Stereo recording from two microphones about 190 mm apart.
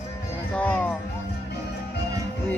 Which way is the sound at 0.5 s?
5° left (ahead or behind).